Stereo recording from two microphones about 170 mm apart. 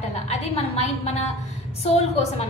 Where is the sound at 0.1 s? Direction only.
40° left (ahead or behind).